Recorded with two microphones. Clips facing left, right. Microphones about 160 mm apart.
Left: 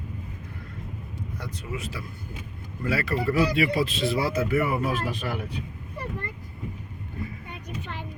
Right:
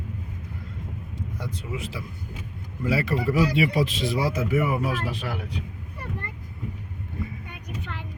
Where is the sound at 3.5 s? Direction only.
15° right (ahead or behind); by 5.4 s centre (ahead or behind).